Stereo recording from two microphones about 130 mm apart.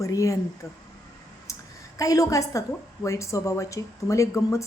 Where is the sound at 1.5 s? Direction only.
25° left (ahead or behind).